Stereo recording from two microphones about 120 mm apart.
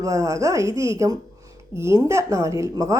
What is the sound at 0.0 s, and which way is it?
Speech, 25° right (ahead or behind).